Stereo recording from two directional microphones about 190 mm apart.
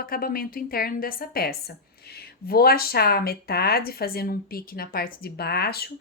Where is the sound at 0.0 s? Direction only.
50° left (ahead or behind).